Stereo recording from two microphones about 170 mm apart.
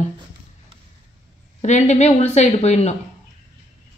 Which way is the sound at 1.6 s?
45° left (ahead or behind).